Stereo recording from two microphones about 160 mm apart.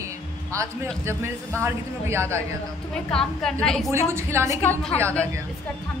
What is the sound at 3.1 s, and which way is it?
Speech, 5° left (ahead or behind).